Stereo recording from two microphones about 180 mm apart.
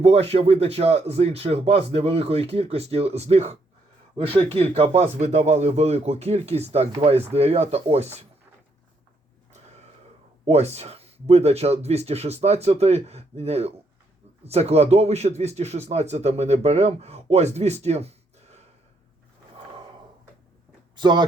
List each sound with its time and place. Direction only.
0.0 s speech: 35° right (ahead or behind)
10.4 s speech: 35° right (ahead or behind)
20.9 s speech: 25° right (ahead or behind)